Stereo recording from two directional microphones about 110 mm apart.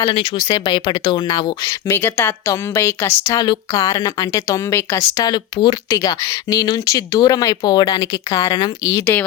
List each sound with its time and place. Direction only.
0.1 s speech: 50° left (ahead or behind)
0.3 s speech: 40° left (ahead or behind)
1.9 s a woman's voice: 20° left (ahead or behind)
3.3 s speech: 40° left (ahead or behind)
4.8 s a woman's voice: 20° left (ahead or behind)
5.1 s a woman's voice: 35° left (ahead or behind)